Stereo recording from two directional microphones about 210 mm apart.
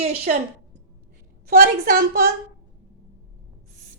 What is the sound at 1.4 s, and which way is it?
Speech, 45° right (ahead or behind).